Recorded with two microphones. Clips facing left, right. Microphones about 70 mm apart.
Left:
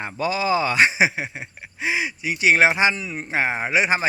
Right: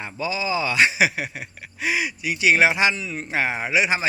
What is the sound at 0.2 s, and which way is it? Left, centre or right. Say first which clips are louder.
Speech: left 3 dB; left.